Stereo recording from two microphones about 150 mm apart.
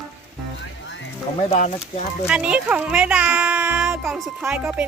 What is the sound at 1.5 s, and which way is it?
Speech, 50° left (ahead or behind).